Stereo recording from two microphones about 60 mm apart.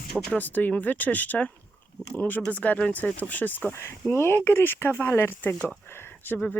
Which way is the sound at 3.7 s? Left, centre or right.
Left.